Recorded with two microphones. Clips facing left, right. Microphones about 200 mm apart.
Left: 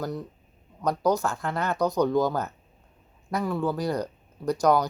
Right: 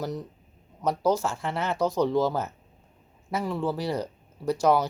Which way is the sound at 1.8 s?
30° right (ahead or behind).